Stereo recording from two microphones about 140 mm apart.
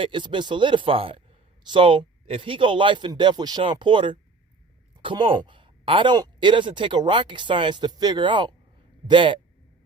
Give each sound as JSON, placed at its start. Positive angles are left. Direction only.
{"t": 0.0, "sound": "speech", "side_deg": -35}